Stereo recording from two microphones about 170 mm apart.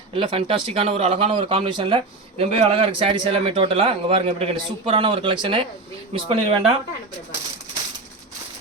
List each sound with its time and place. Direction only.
0.1 s a man's voice: 35° right (ahead or behind)